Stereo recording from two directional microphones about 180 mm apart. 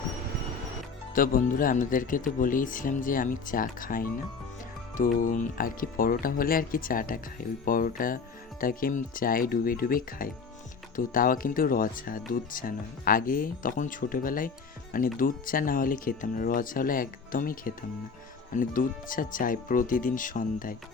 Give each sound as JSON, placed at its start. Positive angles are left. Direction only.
{"t": 1.1, "sound": "speech", "side_deg": 50}